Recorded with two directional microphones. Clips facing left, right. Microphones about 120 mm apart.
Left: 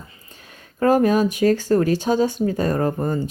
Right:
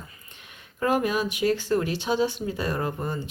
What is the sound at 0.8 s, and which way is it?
Speech, 40° left (ahead or behind).